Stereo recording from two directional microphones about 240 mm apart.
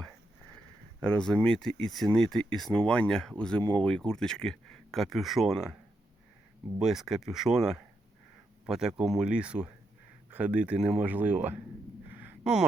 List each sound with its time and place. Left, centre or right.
1.0 s speech: centre
6.7 s speech: centre
12.1 s a sound: centre